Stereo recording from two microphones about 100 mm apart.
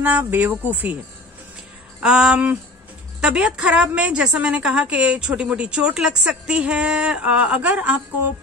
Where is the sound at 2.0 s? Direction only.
10° right (ahead or behind).